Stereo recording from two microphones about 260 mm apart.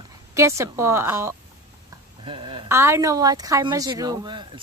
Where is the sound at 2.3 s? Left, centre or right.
Centre.